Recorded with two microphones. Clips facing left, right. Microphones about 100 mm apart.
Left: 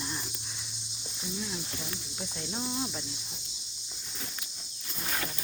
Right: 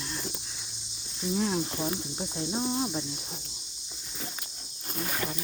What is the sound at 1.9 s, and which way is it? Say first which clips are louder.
Cricket: right 6 dB; 25° right (ahead or behind).